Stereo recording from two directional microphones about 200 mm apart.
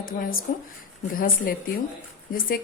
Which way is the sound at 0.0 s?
45° left (ahead or behind).